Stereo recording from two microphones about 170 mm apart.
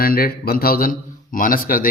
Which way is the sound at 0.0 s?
60° left (ahead or behind).